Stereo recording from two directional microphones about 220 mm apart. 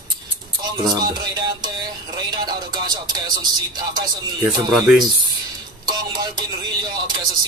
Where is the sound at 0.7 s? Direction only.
20° right (ahead or behind).